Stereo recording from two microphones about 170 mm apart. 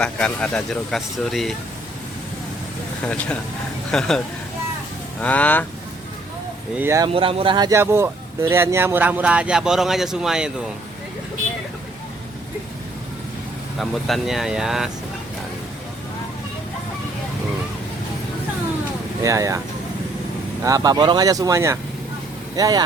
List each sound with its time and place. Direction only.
0.0 s speech: 5° left (ahead or behind)
3.9 s speech: 5° left (ahead or behind)
5.2 s speech: 10° left (ahead or behind)
6.7 s speech: 15° right (ahead or behind)
7.1 s speech: 35° right (ahead or behind); by 10.5 s 5° right (ahead or behind)
13.7 s speech: centre (ahead or behind)
19.2 s speech: 20° right (ahead or behind)
20.7 s speech: 20° right (ahead or behind)